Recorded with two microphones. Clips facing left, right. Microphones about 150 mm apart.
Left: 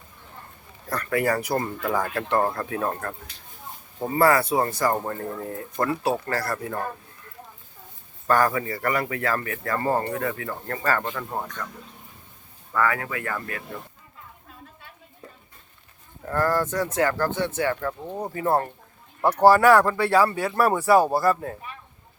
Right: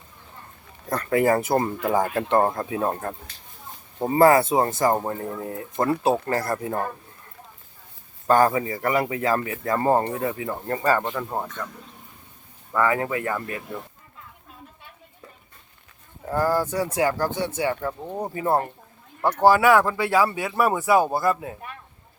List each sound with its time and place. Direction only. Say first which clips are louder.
0.9 s speech: right 4 dB; 20° right (ahead or behind)
8.3 s speech: right 3 dB; 20° right (ahead or behind); by 11.7 s 5° right (ahead or behind)
12.7 s speech: right 3 dB; 20° right (ahead or behind)
16.3 s speech: right 1 dB; 10° right (ahead or behind)
19.2 s speech: left 1 dB; centre (ahead or behind)